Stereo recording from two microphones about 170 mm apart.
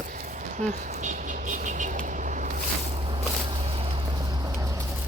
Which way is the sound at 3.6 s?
35° right (ahead or behind).